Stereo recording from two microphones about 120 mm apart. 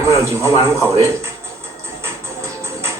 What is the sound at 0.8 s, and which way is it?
Speech, 25° right (ahead or behind).